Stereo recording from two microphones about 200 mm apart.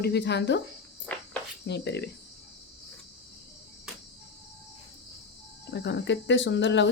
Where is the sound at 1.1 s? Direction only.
5° left (ahead or behind).